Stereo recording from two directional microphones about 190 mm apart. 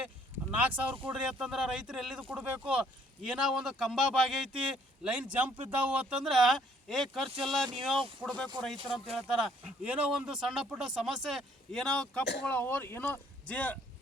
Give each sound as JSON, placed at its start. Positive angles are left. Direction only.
{"t": 0.5, "sound": "speech", "side_deg": -10}
{"t": 7.3, "sound": "speech", "side_deg": -30}
{"t": 7.8, "sound": "speech", "side_deg": 0}